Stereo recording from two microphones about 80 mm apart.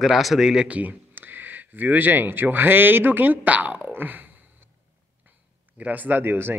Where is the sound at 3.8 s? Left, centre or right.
Right.